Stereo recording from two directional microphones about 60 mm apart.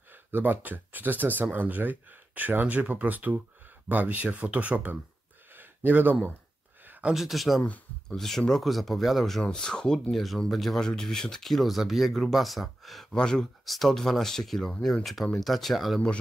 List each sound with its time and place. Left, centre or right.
0.1 s speech: right
7.2 s speech: centre
9.4 s speech: centre
10.1 s speech: centre
13.1 s speech: centre